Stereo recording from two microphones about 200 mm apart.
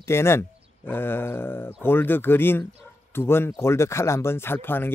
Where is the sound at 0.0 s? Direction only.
15° left (ahead or behind).